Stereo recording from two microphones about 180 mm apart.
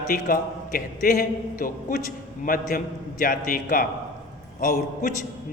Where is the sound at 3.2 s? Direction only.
50° left (ahead or behind).